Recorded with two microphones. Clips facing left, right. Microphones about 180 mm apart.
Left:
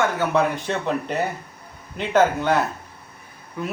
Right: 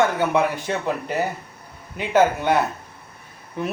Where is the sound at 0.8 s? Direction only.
5° right (ahead or behind).